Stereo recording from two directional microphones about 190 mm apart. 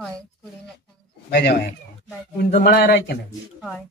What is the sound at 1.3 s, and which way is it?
Speech, 60° left (ahead or behind).